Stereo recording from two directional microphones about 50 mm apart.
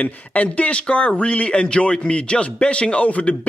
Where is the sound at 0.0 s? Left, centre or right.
Left.